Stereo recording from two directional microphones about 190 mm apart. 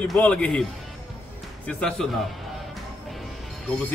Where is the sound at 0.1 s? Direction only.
5° left (ahead or behind).